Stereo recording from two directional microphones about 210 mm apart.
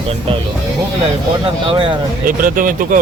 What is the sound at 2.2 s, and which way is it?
Speech, 40° right (ahead or behind).